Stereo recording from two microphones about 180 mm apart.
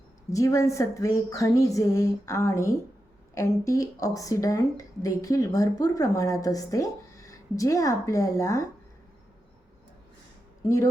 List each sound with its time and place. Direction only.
0.3 s speech: 15° left (ahead or behind)